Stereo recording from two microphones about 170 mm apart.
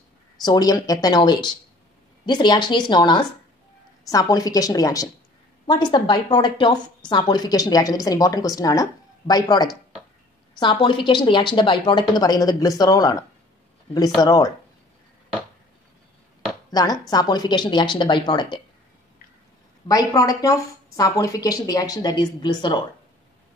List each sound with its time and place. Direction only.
0.4 s a woman's voice: 25° left (ahead or behind)
16.7 s a woman's voice: 20° left (ahead or behind)
19.9 s a woman's voice: 20° left (ahead or behind)